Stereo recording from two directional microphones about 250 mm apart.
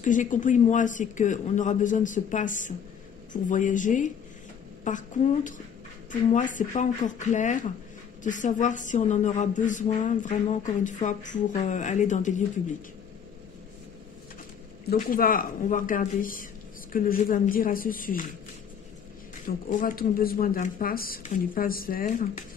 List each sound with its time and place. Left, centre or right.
0.0 s a woman's voice: left
14.9 s speech: left
19.4 s speech: left